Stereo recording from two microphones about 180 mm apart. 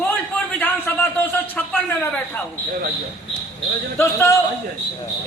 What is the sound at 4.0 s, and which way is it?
Speech, 15° left (ahead or behind).